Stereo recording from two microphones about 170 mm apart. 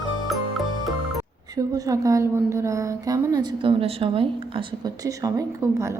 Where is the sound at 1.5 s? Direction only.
20° right (ahead or behind).